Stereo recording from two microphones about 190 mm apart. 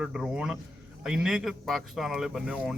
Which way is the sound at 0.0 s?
5° right (ahead or behind).